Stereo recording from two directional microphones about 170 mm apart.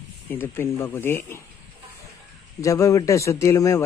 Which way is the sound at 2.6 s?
20° left (ahead or behind).